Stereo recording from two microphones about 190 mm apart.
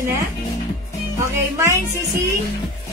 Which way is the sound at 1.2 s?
15° right (ahead or behind).